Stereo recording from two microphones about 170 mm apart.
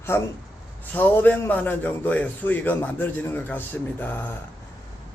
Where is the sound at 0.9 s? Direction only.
10° left (ahead or behind).